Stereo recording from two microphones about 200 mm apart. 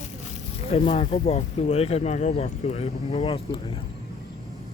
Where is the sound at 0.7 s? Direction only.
30° left (ahead or behind).